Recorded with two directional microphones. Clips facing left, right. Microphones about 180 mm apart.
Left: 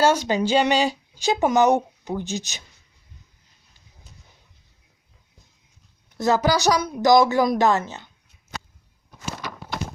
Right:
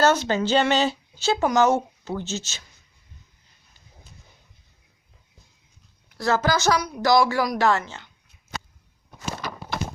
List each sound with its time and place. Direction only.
0.0 s speech: 10° left (ahead or behind)
6.1 s speech: 15° left (ahead or behind)